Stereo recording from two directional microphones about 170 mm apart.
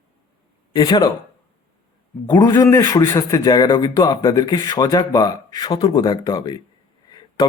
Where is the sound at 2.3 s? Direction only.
25° left (ahead or behind).